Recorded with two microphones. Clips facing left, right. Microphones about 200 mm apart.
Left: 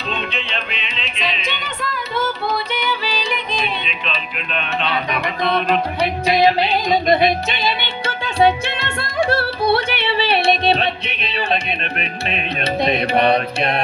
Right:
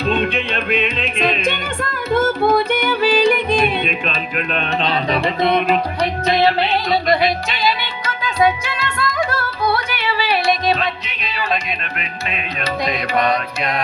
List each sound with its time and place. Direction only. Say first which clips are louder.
0.1 s music: right 6 dB; 50° right (ahead or behind); by 5.6 s 20° right (ahead or behind)
5.6 s music: right 1 dB; 5° right (ahead or behind)
6.2 s music: left 1 dB; 15° left (ahead or behind)
12.8 s mantra: left 3 dB; 30° left (ahead or behind)